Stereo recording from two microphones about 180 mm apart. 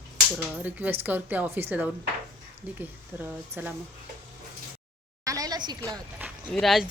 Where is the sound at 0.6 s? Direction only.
10° right (ahead or behind).